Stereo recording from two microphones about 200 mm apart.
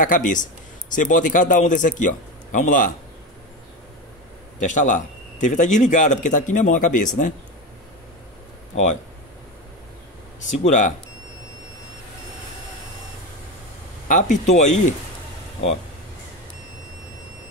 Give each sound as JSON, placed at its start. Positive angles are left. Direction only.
{"t": 0.0, "sound": "a man's voice", "side_deg": 40}
{"t": 4.6, "sound": "a man's voice", "side_deg": 40}
{"t": 10.5, "sound": "a man's voice", "side_deg": 35}
{"t": 14.0, "sound": "a man's voice", "side_deg": 40}